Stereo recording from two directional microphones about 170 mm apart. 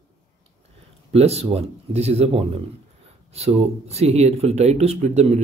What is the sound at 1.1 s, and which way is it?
Speech, 35° right (ahead or behind).